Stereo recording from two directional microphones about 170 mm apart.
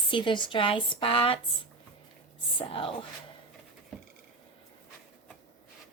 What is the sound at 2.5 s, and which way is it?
Speech, 30° left (ahead or behind).